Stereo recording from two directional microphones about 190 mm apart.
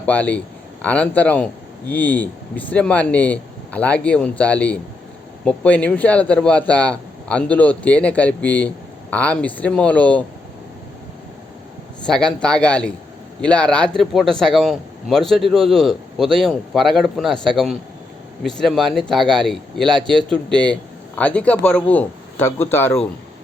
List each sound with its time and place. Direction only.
0.0 s speech: 10° left (ahead or behind)
12.0 s speech: 5° left (ahead or behind)